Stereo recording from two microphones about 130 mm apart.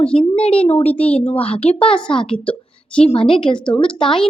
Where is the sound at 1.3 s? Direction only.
50° left (ahead or behind).